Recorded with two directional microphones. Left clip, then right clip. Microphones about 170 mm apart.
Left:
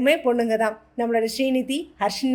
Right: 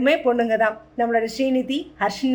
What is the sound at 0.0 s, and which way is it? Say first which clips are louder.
Speech: right 1 dB; 40° left (ahead or behind).